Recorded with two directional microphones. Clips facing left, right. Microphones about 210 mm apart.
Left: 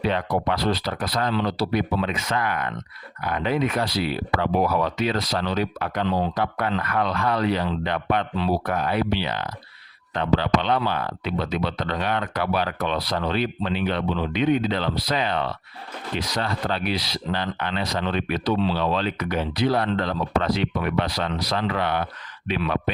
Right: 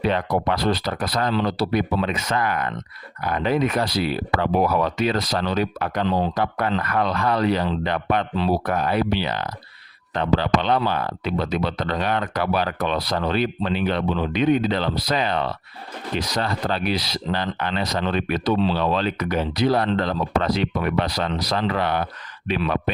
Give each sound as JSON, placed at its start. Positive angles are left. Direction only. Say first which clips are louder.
{"t": 0.0, "sound": "speech", "louder": "right 2 dB", "side_deg": -45}